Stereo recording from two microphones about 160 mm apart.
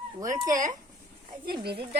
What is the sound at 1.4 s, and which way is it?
Speech, 80° right.